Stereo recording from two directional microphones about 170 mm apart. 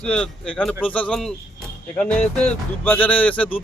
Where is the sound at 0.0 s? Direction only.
5° left (ahead or behind).